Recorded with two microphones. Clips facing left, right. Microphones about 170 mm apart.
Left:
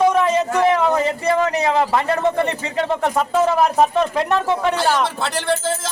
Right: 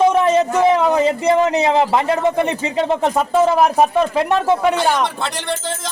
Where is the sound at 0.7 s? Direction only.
20° right (ahead or behind).